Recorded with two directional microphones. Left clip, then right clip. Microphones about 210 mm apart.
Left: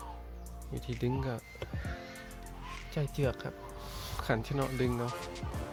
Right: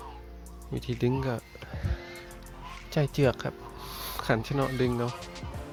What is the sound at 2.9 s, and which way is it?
Speech, 15° right (ahead or behind).